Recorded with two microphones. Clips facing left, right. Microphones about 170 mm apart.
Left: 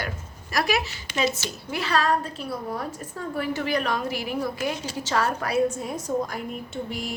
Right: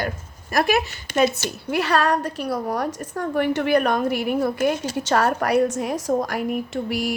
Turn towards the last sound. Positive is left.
turn(degrees=-80)